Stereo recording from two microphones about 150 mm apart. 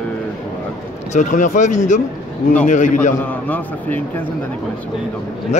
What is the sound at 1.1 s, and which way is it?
Speech, 55° left (ahead or behind).